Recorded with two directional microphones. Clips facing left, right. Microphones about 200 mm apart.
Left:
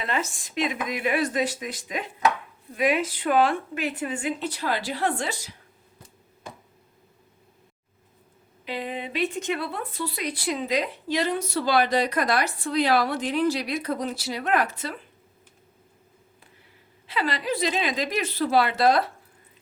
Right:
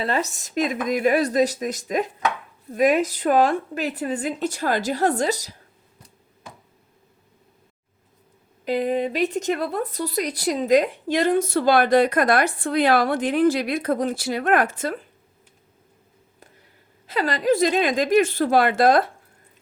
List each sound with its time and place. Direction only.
0.0 s a woman's voice: 40° right (ahead or behind)
8.6 s speech: 45° right (ahead or behind)
17.1 s speech: 45° right (ahead or behind)